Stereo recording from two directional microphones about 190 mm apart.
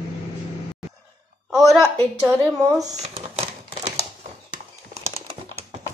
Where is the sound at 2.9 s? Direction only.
35° right (ahead or behind).